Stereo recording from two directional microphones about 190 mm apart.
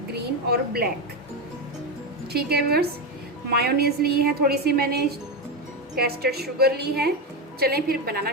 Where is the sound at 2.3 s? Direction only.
55° right (ahead or behind).